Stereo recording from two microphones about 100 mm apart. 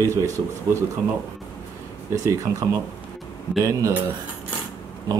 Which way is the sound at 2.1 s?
35° right (ahead or behind).